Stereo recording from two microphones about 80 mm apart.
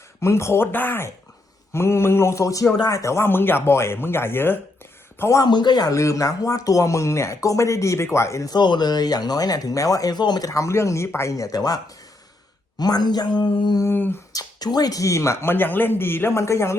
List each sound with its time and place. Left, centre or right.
0.2 s speech: left
1.7 s speech: left
5.4 s speech: left
8.4 s speech: left
10.5 s speech: left
12.8 s speech: left
13.8 s speech: left
14.3 s speech: left